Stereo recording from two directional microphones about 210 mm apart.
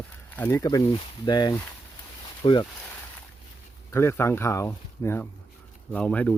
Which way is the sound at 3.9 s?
15° left (ahead or behind).